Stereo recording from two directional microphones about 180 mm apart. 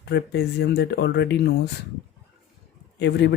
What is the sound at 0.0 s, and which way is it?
Speech, 70° left (ahead or behind).